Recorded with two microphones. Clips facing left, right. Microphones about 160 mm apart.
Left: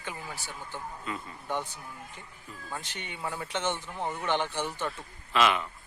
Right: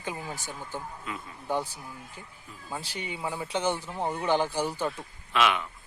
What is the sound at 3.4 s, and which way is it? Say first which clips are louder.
Speech: right 4 dB; 35° right (ahead or behind).